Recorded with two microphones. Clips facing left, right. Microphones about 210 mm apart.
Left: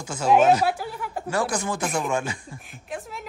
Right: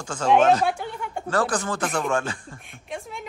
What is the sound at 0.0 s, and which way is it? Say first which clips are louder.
Speech: even; 5° left (ahead or behind).